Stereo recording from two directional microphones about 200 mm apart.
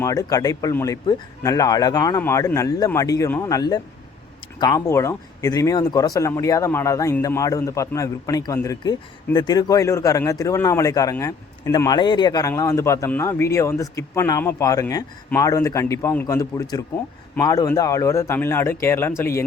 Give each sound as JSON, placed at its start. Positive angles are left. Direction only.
{"t": 0.0, "sound": "speech", "side_deg": 15}